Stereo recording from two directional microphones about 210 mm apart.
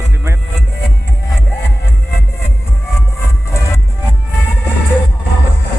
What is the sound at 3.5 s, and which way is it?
Music, 15° left (ahead or behind).